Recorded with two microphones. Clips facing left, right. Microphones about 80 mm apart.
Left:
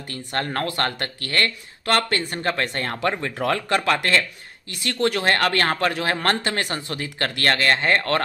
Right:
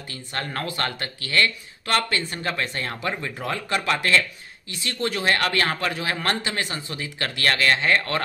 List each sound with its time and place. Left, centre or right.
0.1 s speech: left